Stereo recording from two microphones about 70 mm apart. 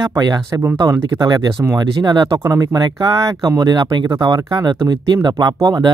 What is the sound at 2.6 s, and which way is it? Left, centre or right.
Speech, right.